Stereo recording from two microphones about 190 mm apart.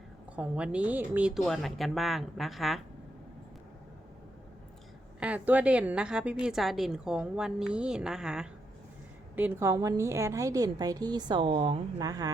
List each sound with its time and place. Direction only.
0.3 s speech: 5° right (ahead or behind)
5.2 s a woman's voice: 5° right (ahead or behind)